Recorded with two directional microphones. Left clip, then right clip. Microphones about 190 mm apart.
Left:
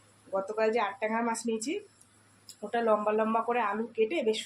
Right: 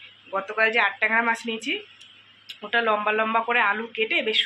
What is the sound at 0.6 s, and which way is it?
Speech, 15° left (ahead or behind).